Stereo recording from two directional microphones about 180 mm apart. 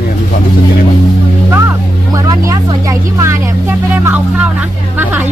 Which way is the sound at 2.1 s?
20° right (ahead or behind).